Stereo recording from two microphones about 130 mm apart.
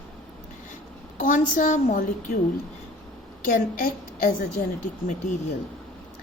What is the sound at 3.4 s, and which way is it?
Speech, 90° left.